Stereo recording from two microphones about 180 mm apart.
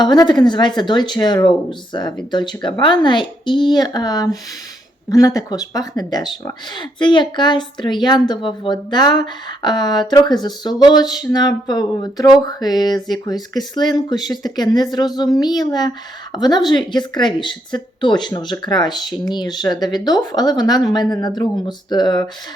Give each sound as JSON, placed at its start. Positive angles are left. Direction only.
{"t": 0.0, "sound": "a woman's voice", "side_deg": 25}